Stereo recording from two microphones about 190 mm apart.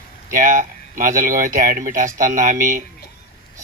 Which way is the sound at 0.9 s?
45° right (ahead or behind).